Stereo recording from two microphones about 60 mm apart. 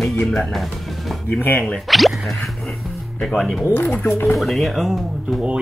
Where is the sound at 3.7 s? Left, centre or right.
Left.